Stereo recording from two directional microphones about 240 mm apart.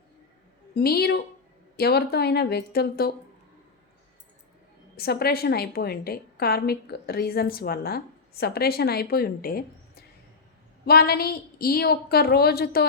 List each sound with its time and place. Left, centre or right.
0.7 s a woman's voice: left
4.9 s a woman's voice: left